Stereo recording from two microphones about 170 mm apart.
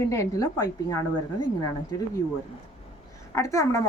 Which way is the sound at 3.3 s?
20° left (ahead or behind).